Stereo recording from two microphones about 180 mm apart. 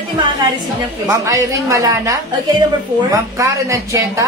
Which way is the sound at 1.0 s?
15° right (ahead or behind).